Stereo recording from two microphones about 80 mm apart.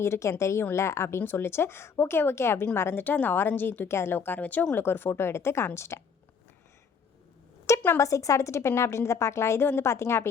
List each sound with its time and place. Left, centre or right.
0.0 s a woman's voice: left
7.9 s a woman's voice: left